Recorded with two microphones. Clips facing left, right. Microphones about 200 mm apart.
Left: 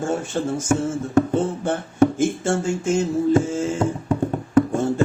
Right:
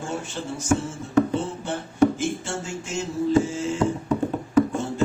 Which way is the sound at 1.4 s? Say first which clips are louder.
Left 6 dB; 50° left (ahead or behind).